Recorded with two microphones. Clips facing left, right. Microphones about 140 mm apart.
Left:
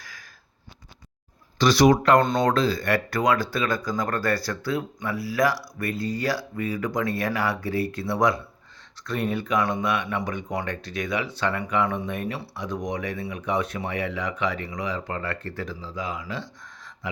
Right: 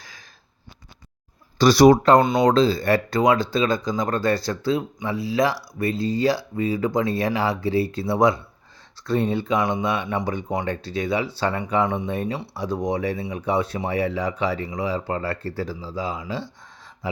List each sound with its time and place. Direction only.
0.0 s sniff: 25° right (ahead or behind)
1.5 s speech: 35° right (ahead or behind)